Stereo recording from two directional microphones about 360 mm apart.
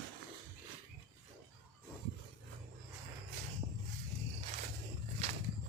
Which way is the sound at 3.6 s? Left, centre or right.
Centre.